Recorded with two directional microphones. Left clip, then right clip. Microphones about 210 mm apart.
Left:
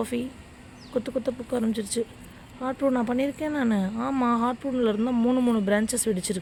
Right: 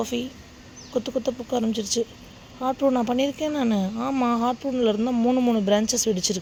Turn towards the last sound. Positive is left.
turn(degrees=-5)  # may be behind; listen again after turning